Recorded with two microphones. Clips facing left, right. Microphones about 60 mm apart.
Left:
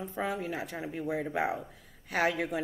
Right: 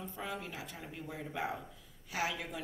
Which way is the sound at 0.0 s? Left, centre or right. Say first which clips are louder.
Left 8 dB; left.